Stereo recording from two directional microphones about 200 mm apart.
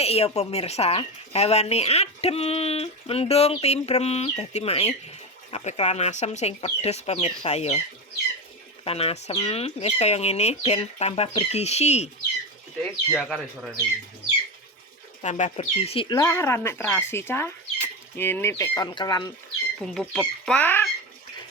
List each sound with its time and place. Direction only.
0.0 s speech: 30° left (ahead or behind)
8.8 s speech: 30° left (ahead or behind)
12.8 s speech: 5° left (ahead or behind)
15.2 s speech: 35° left (ahead or behind); by 19.3 s 20° left (ahead or behind)
19.8 s speech: centre (ahead or behind)